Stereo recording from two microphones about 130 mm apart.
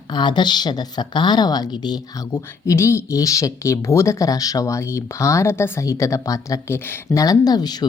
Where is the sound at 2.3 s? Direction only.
20° left (ahead or behind).